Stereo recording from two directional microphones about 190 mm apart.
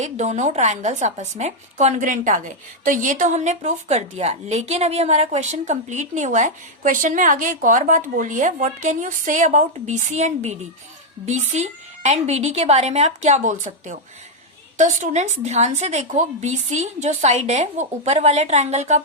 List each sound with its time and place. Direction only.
0.0 s a woman's voice: 35° right (ahead or behind)